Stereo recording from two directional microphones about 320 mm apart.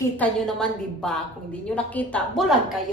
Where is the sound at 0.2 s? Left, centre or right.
Centre.